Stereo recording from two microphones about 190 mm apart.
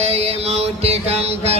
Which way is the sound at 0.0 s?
35° right (ahead or behind).